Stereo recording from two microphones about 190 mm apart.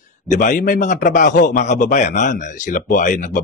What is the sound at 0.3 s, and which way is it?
A man's voice, 40° left (ahead or behind).